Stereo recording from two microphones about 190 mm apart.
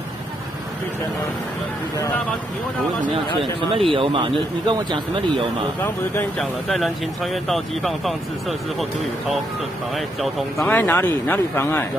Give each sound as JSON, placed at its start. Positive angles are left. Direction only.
{"t": 3.7, "sound": "speech", "side_deg": -30}
{"t": 6.1, "sound": "speech", "side_deg": 0}
{"t": 9.9, "sound": "speech", "side_deg": 0}